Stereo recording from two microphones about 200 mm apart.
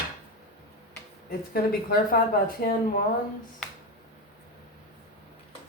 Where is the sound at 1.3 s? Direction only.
50° left (ahead or behind).